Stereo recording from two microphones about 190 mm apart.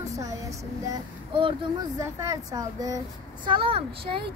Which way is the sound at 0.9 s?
25° right (ahead or behind).